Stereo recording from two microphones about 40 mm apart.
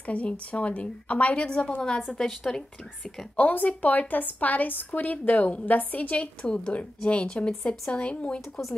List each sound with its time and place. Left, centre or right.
0.0 s a woman's voice: left; by 3.3 s centre
3.3 s a woman's voice: left
6.4 s a woman's voice: left